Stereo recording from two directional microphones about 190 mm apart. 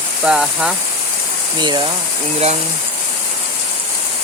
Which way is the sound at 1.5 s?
25° right (ahead or behind).